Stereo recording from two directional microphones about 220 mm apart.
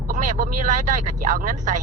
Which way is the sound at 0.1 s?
35° right (ahead or behind).